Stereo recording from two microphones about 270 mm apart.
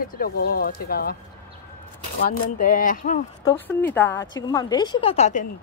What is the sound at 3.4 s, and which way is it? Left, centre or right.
A woman's voice, centre.